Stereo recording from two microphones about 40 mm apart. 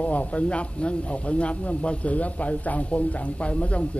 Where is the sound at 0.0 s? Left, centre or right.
Left.